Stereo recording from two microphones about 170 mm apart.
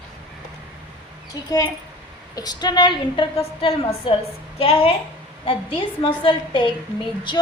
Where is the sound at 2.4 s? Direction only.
25° left (ahead or behind).